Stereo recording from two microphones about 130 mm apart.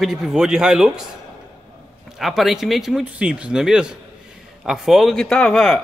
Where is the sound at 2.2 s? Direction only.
Centre (ahead or behind).